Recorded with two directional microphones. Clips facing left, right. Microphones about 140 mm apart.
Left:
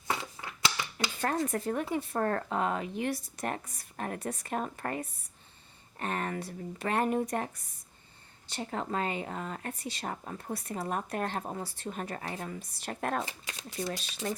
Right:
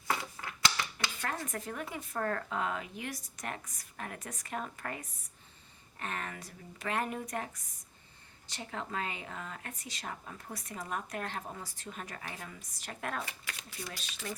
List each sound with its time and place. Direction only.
0.1 s crushing: 20° left (ahead or behind)
0.9 s speech: 30° left (ahead or behind)
13.2 s speech: 25° left (ahead or behind)